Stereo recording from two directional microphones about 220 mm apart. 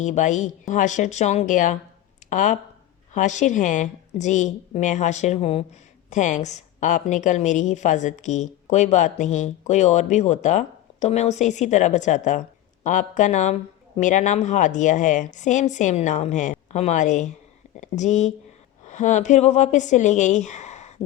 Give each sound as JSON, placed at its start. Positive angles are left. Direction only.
{"t": 0.0, "sound": "a woman's voice", "side_deg": 30}